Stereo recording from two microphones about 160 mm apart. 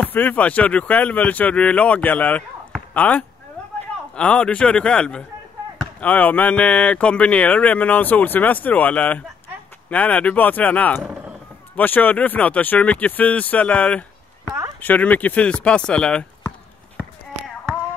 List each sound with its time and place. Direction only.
0.0 s speech: 10° left (ahead or behind)